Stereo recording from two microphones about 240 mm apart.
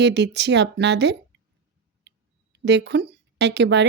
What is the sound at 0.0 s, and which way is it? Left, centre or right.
Speech, right.